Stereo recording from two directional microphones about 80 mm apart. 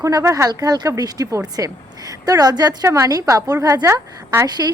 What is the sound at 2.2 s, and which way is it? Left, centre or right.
Speech, right.